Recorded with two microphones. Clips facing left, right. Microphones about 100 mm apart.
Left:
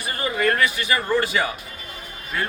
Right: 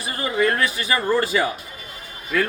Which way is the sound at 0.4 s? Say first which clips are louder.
Left 2 dB; 35° right (ahead or behind).